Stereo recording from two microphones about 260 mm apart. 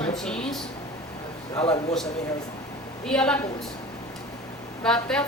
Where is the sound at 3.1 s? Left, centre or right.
Centre.